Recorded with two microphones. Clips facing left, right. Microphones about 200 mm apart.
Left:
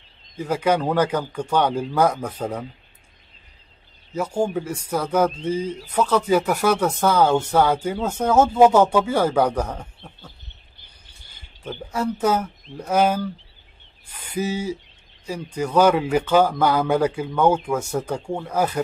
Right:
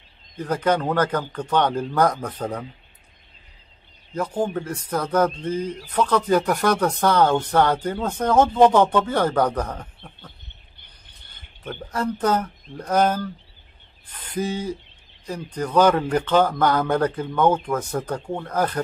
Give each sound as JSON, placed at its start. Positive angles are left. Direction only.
{"t": 0.4, "sound": "speech", "side_deg": 10}
{"t": 4.1, "sound": "speech", "side_deg": 10}
{"t": 10.8, "sound": "a sound", "side_deg": -60}
{"t": 11.3, "sound": "speech", "side_deg": 10}